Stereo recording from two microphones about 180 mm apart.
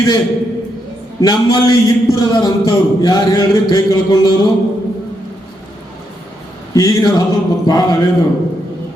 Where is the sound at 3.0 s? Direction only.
20° left (ahead or behind).